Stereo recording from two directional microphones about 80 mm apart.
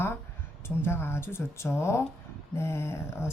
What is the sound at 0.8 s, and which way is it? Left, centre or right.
Speech, left.